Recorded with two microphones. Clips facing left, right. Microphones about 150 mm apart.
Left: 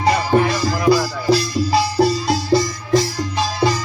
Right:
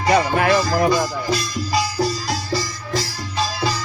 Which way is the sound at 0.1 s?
75° right (ahead or behind).